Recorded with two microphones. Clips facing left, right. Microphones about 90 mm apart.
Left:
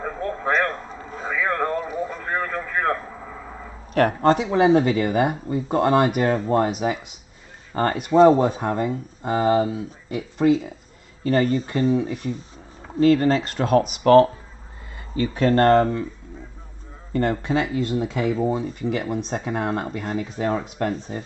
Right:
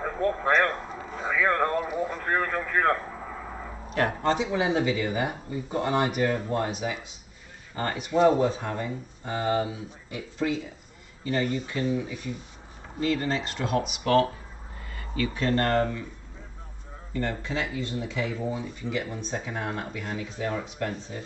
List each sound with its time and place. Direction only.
0.0 s a sound: centre (ahead or behind)
3.9 s speech: 55° left (ahead or behind)
8.1 s speech: 35° left (ahead or behind)
8.5 s speech: 50° left (ahead or behind)
11.7 s speech: 55° left (ahead or behind); by 14.3 s 40° left (ahead or behind)
15.3 s speech: 45° left (ahead or behind)
17.1 s speech: 60° left (ahead or behind)